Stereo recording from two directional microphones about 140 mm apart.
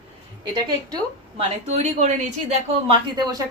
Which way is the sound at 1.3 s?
50° right (ahead or behind).